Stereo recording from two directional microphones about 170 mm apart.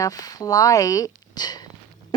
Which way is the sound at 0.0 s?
20° left (ahead or behind).